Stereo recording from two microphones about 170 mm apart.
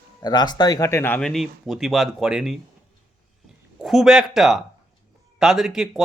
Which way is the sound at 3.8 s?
Centre (ahead or behind).